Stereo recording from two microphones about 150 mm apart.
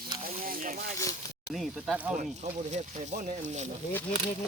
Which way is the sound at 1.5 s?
Centre (ahead or behind).